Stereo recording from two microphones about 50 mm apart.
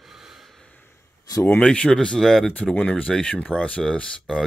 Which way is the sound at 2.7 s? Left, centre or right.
Left.